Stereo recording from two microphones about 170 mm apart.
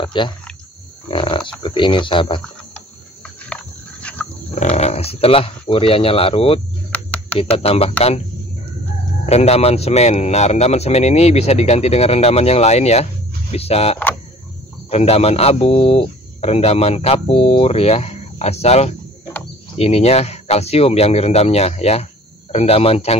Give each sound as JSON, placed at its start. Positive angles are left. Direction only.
{"t": 0.0, "sound": "speech", "side_deg": 30}
{"t": 3.5, "sound": "a sound", "side_deg": 5}
{"t": 4.6, "sound": "speech", "side_deg": 40}
{"t": 6.9, "sound": "a sound", "side_deg": 10}
{"t": 7.3, "sound": "speech", "side_deg": 35}
{"t": 9.2, "sound": "speech", "side_deg": 40}